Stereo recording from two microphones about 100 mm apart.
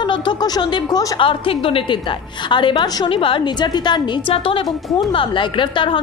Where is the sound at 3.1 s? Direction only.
65° left (ahead or behind).